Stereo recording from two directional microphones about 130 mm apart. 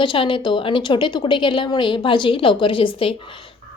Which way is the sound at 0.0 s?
40° left (ahead or behind).